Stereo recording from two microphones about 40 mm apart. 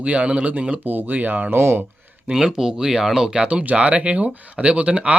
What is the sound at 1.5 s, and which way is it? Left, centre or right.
Speech, right.